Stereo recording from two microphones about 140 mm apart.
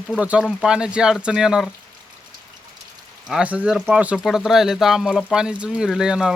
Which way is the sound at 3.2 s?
5° right (ahead or behind).